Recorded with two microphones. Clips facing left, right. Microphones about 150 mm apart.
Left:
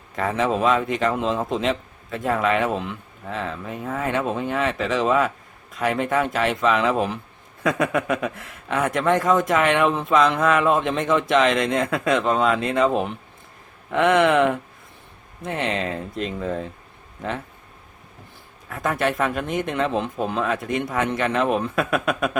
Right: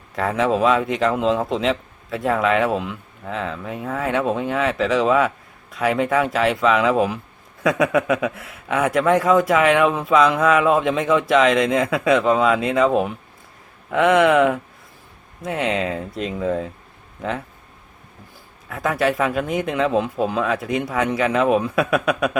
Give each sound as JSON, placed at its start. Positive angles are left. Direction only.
{"t": 0.2, "sound": "a man's voice", "side_deg": 0}
{"t": 18.7, "sound": "a man's voice", "side_deg": 0}